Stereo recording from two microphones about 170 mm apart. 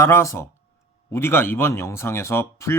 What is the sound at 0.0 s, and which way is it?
A man's voice, 15° left (ahead or behind).